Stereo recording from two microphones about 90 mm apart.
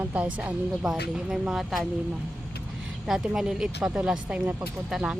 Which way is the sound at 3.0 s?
5° right (ahead or behind).